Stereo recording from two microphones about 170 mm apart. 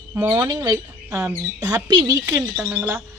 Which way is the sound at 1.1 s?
10° right (ahead or behind).